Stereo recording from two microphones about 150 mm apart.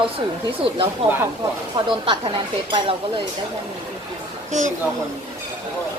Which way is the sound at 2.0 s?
35° right (ahead or behind).